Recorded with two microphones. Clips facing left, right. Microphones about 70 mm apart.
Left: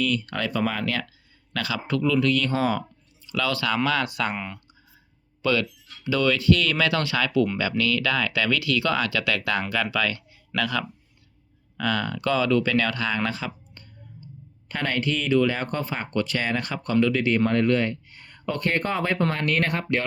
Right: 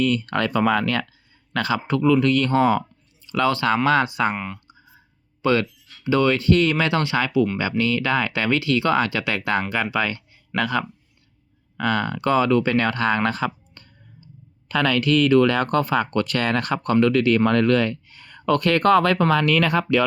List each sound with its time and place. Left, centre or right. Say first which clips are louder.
0.0 s speech: right 5 dB; right
1.5 s speech: right 4 dB; right
4.4 s speech: right 3 dB; centre
5.4 s speech: right 4 dB; right
13.8 s clicking: right 1 dB; right
14.7 s speech: right 7 dB; right
16.1 s speech: right 4 dB; right